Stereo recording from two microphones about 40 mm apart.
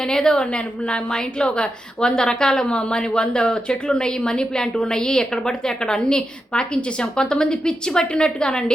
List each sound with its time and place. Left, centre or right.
0.0 s a woman's voice: centre
0.4 s a woman's voice: left